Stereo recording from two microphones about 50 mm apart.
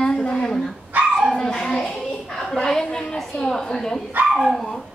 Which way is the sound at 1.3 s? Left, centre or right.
Centre.